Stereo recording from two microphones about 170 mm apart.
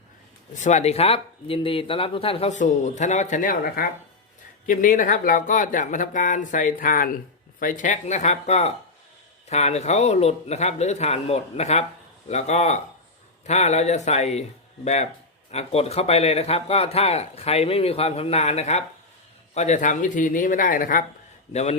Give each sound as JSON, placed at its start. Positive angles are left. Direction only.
{"t": 0.5, "sound": "speech", "side_deg": 45}
{"t": 15.5, "sound": "speech", "side_deg": 35}
{"t": 21.5, "sound": "speech", "side_deg": 40}